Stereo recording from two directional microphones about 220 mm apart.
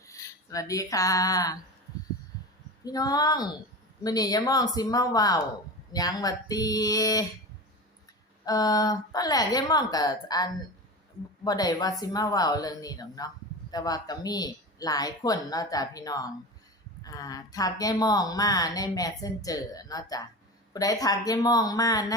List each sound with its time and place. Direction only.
0.0 s a sound: 15° left (ahead or behind)
2.8 s a woman's voice: 15° left (ahead or behind)
8.4 s a woman's voice: 15° left (ahead or behind)